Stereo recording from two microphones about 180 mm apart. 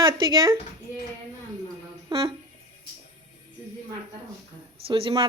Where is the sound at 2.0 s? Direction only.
25° right (ahead or behind).